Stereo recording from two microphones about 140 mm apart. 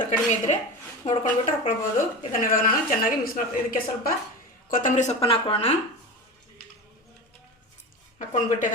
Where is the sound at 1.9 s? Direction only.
80° left.